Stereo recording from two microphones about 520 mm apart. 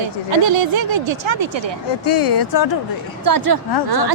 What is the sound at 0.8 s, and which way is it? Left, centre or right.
Speech, right.